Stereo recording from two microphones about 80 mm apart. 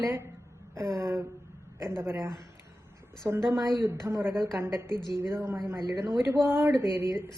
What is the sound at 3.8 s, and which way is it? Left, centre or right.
A woman's voice, right.